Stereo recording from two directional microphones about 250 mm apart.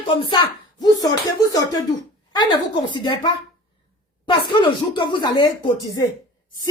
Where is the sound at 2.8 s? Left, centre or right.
Centre.